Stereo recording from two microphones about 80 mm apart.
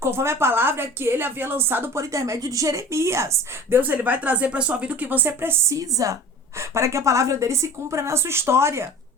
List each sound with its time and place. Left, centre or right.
0.0 s a woman's voice: right
2.0 s a woman's voice: right
5.7 s a woman's voice: right